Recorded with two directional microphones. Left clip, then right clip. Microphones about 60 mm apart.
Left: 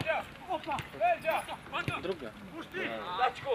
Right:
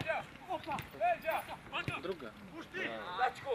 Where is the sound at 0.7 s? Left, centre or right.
Centre.